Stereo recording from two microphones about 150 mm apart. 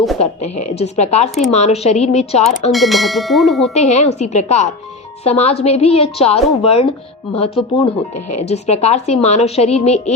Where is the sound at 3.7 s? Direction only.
45° left (ahead or behind).